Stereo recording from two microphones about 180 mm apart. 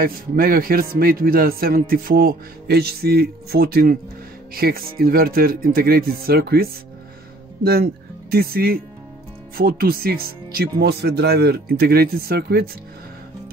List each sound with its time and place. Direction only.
0.0 s speech: 55° right (ahead or behind)